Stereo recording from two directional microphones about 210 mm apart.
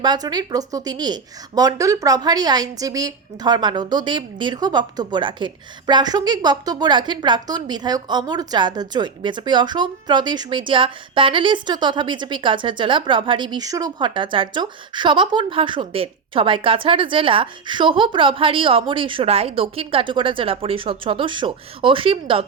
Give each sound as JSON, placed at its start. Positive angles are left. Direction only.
{"t": 0.0, "sound": "a woman's voice", "side_deg": -20}